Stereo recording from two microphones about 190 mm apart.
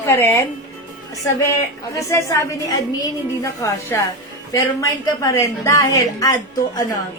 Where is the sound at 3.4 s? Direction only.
15° left (ahead or behind).